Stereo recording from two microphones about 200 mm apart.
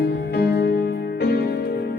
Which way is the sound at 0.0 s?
50° left (ahead or behind).